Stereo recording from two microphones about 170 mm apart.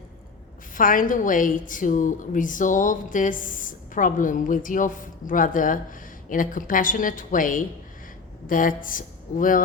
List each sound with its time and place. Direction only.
0.8 s a woman's voice: 55° left (ahead or behind)